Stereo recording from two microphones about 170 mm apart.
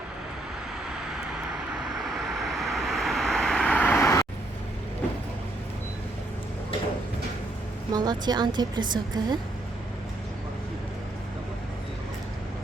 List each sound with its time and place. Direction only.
2.0 s vehicle: centre (ahead or behind); by 4.3 s 20° left (ahead or behind)
7.9 s a woman's voice: 25° right (ahead or behind)